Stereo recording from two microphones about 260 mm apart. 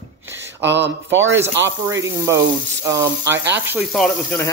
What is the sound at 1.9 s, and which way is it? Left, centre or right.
Speech, centre.